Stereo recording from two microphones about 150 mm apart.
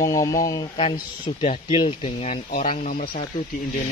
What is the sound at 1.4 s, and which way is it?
Speech, 40° left (ahead or behind).